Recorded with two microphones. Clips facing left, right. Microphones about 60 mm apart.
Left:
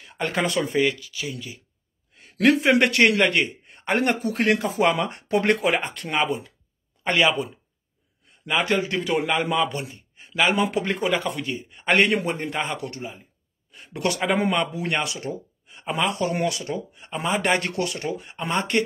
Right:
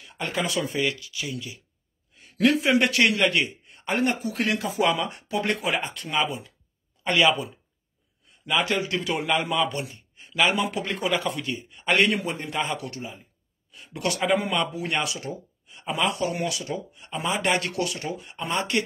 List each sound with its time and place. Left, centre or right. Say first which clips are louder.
0.2 s speech: left 3 dB; left
0.7 s speech: left 5 dB; centre
2.3 s a man's voice: left 3 dB; left
3.3 s a sound: left 2 dB; left
3.8 s a man's voice: left 3 dB; left
8.9 s a man's voice: left 2 dB; centre
15.6 s a sound: left 1 dB; left
16.0 s a man's voice: left 2 dB; left